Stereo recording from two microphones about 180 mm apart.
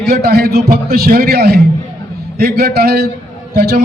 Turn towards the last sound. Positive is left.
turn(degrees=-60)  # may be behind; listen again after turning